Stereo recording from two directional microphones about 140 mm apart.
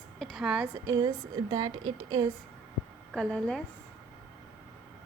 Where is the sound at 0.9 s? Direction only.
30° right (ahead or behind).